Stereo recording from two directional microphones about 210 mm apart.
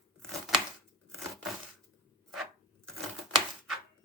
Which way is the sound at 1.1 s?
Centre (ahead or behind).